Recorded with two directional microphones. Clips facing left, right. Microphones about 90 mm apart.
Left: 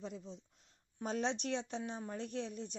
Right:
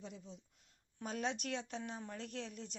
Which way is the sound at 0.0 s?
40° left (ahead or behind).